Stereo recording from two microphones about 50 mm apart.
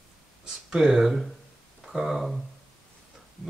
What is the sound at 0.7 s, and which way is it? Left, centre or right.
Speech, centre.